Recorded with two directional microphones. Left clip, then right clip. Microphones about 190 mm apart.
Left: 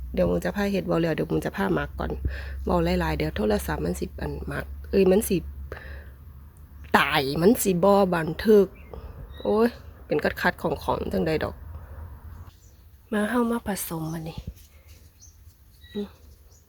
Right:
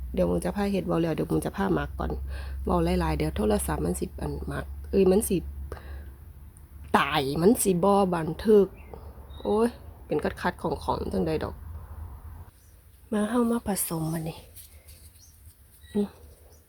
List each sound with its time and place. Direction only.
0.1 s speech: centre (ahead or behind)
13.1 s speech: centre (ahead or behind)
13.7 s speech: 10° right (ahead or behind)
15.9 s speech: 20° right (ahead or behind)